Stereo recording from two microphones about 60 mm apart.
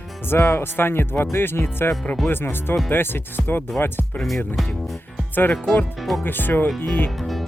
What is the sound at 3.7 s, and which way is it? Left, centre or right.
Speech, left.